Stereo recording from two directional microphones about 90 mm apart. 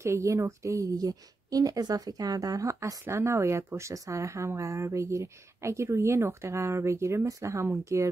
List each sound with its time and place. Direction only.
0.0 s a woman's voice: 35° right (ahead or behind)